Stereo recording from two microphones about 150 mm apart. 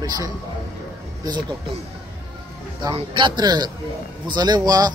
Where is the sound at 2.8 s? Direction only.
35° right (ahead or behind).